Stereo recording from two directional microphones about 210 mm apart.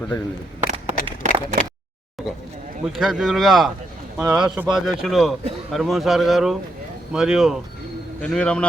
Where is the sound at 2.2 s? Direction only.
Centre (ahead or behind).